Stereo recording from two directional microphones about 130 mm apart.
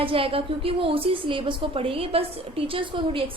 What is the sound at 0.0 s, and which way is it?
A woman's voice, 45° right (ahead or behind).